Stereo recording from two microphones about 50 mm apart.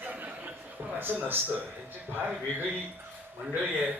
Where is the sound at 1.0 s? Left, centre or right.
Right.